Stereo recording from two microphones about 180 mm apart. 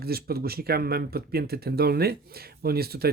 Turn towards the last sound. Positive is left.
turn(degrees=-60)  # may be behind; listen again after turning